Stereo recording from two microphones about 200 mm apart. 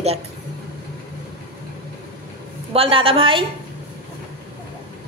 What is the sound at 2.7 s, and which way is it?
Speech, 25° right (ahead or behind).